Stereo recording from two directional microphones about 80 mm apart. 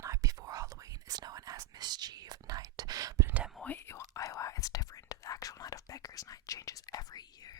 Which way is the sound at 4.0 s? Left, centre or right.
Left.